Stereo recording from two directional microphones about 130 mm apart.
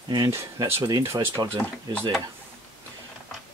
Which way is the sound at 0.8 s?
30° right (ahead or behind).